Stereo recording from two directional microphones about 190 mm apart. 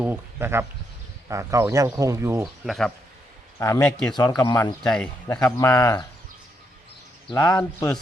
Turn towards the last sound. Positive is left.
turn(degrees=10)  # may be behind; listen again after turning